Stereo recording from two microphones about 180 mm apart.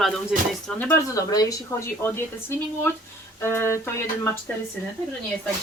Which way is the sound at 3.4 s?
15° left (ahead or behind).